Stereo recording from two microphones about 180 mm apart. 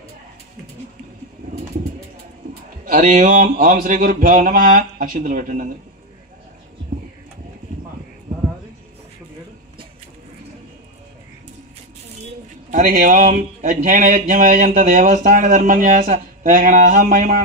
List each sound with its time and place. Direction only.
2.8 s speech: 45° right (ahead or behind)
12.7 s speech: 45° right (ahead or behind)